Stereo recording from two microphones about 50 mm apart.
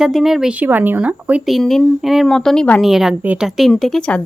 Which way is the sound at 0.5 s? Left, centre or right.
Right.